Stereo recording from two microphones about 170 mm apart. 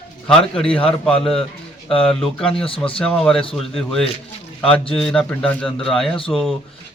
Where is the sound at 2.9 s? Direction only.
5° left (ahead or behind).